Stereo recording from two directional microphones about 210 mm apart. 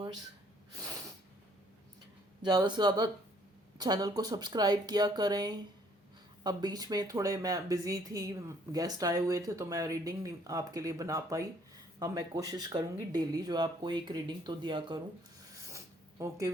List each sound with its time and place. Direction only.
0.8 s snort: 15° right (ahead or behind)
2.4 s speech: 20° right (ahead or behind)
15.7 s zipper: 15° right (ahead or behind)